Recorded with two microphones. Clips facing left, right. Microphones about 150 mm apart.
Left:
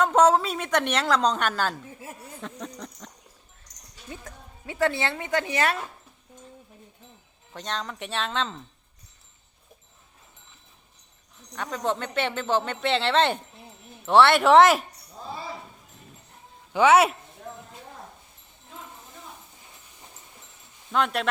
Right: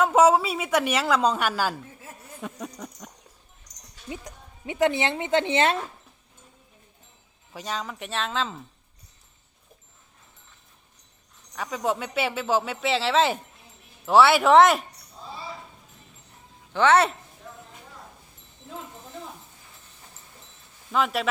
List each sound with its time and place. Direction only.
0.0 s speech: 5° right (ahead or behind)
4.1 s speech: 15° right (ahead or behind)
7.5 s speech: 5° right (ahead or behind)
11.5 s speech: 5° right (ahead or behind)
16.7 s a man's voice: 10° left (ahead or behind)
20.9 s speech: centre (ahead or behind)